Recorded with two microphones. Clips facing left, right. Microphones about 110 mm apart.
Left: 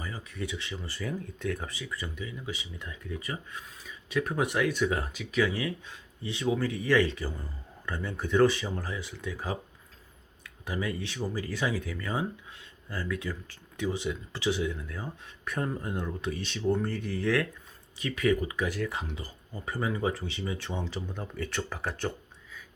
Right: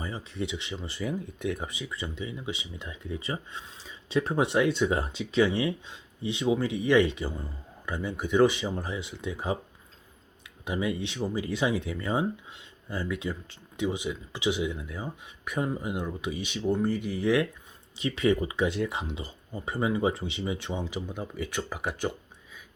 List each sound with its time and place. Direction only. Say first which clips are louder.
0.0 s speech: right 3 dB; 25° right (ahead or behind)
10.7 s speech: right 3 dB; 20° right (ahead or behind)